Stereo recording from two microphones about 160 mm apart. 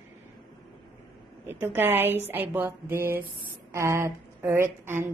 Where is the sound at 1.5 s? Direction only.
10° right (ahead or behind).